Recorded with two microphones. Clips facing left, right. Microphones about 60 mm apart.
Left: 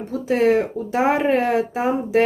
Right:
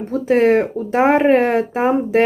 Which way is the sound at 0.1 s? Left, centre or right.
Right.